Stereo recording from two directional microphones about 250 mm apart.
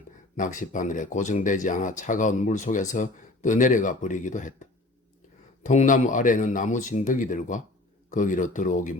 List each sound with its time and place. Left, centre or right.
0.3 s speech: left